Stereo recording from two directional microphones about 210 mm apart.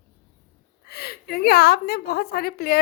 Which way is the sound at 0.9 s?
50° left (ahead or behind).